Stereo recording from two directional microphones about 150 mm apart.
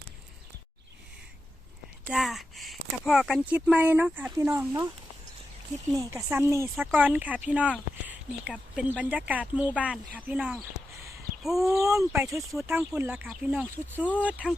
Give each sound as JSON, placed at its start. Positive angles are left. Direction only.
{"t": 2.0, "sound": "speech", "side_deg": 0}
{"t": 6.0, "sound": "speech", "side_deg": -20}
{"t": 8.0, "sound": "a sound", "side_deg": -10}
{"t": 9.0, "sound": "speech", "side_deg": -10}
{"t": 11.7, "sound": "speech", "side_deg": -20}